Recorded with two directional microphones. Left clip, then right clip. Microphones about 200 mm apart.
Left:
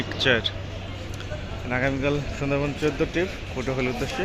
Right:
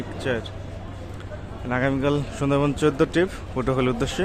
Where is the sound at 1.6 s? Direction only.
20° right (ahead or behind); by 4.2 s 35° right (ahead or behind).